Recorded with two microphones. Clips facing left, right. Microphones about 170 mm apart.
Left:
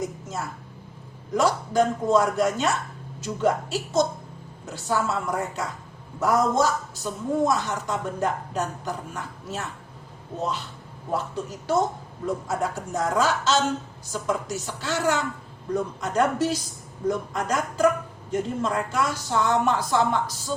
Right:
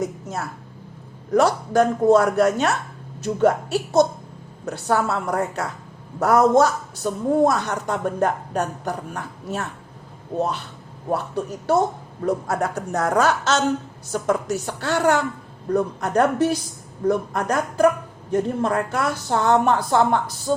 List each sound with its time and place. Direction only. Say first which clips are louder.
0.0 s a woman's voice: right 4 dB; 65° right (ahead or behind)